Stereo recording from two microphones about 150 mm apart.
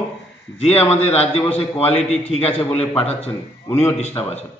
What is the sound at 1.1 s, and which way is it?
Speech, 45° left (ahead or behind).